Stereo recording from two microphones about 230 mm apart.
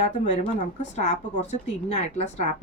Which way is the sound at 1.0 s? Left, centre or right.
Left.